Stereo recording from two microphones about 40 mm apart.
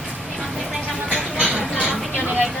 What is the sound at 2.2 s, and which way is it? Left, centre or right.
Vehicle, right.